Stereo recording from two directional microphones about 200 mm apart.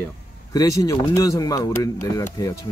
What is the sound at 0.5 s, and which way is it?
Speech, 15° left (ahead or behind).